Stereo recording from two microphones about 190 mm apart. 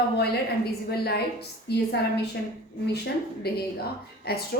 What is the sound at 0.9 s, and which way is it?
Speech, 55° left (ahead or behind).